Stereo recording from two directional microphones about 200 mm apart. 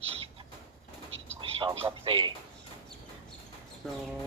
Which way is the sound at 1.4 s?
25° right (ahead or behind).